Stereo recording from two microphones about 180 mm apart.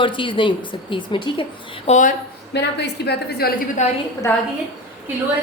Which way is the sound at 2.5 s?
70° left (ahead or behind).